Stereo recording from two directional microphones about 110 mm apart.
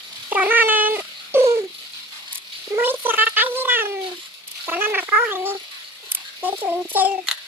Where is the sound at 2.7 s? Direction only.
20° right (ahead or behind).